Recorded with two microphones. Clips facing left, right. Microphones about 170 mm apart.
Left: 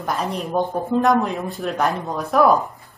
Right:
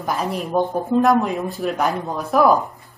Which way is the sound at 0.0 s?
Centre (ahead or behind).